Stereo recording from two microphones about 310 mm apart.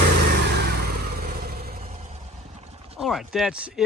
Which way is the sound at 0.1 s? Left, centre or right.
Right.